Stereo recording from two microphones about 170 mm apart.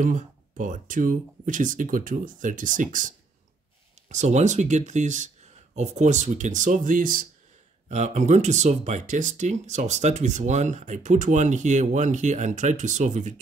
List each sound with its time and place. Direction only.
0.0 s speech: 50° right (ahead or behind)
7.9 s speech: 45° right (ahead or behind)